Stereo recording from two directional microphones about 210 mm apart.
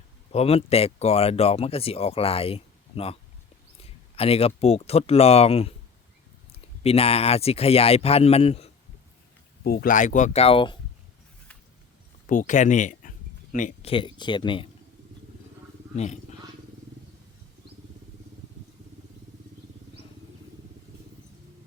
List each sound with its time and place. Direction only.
0.3 s speech: 30° left (ahead or behind)
9.6 s speech: 45° left (ahead or behind); by 10.8 s 25° left (ahead or behind)
12.3 s speech: 35° left (ahead or behind)